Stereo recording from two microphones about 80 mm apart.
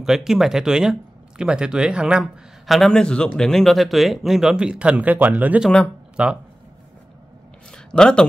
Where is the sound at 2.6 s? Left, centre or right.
Centre.